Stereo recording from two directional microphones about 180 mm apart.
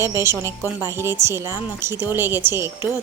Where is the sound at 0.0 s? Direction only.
15° right (ahead or behind).